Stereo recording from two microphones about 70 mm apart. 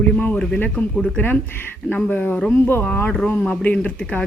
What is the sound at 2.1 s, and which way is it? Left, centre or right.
A woman's voice, left.